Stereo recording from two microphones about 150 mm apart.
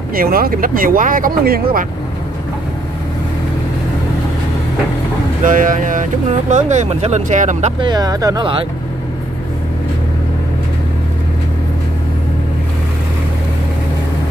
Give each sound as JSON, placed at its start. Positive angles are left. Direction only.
{"t": 0.1, "sound": "speech", "side_deg": -80}
{"t": 5.4, "sound": "speech", "side_deg": -65}
{"t": 6.5, "sound": "speech", "side_deg": -50}
{"t": 7.8, "sound": "speech", "side_deg": -25}